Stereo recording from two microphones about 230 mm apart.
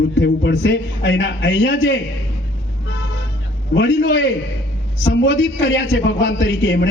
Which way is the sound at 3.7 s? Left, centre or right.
Left.